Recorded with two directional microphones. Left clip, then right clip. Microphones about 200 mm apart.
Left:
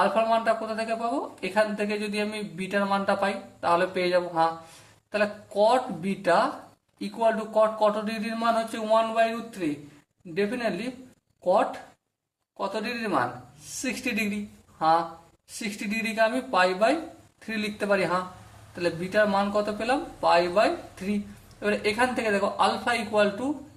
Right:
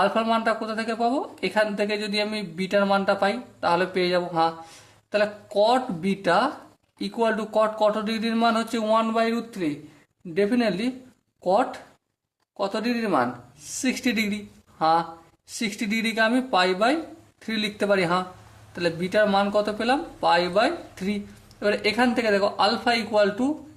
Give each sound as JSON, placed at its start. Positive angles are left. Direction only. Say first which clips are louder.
{"t": 0.0, "sound": "speech", "louder": "right 1 dB", "side_deg": -45}